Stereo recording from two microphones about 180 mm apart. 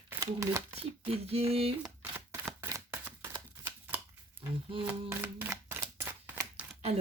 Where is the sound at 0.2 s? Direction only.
20° right (ahead or behind).